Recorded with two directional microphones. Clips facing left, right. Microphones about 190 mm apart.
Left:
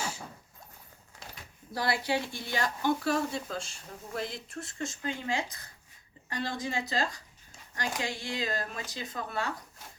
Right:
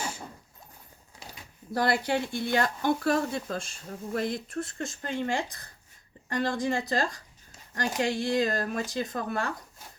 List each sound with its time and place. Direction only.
1.7 s speech: 55° right (ahead or behind)